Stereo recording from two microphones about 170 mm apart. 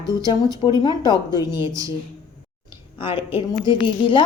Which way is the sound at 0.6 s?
25° left (ahead or behind).